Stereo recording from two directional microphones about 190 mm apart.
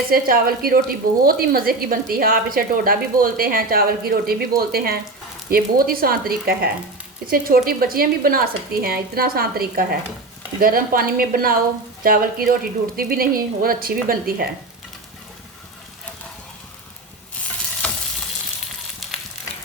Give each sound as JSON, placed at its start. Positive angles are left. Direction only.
{"t": 0.1, "sound": "speech", "side_deg": -50}
{"t": 17.8, "sound": "frying", "side_deg": 5}